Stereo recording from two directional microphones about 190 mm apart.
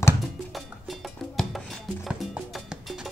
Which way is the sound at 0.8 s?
Centre (ahead or behind).